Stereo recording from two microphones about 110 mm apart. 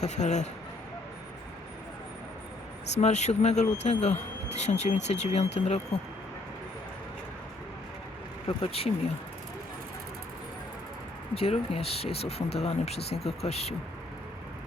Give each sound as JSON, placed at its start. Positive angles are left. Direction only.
{"t": 0.0, "sound": "speech", "side_deg": 90}
{"t": 3.0, "sound": "speech", "side_deg": 90}
{"t": 8.4, "sound": "speech", "side_deg": 60}
{"t": 11.3, "sound": "speech", "side_deg": 60}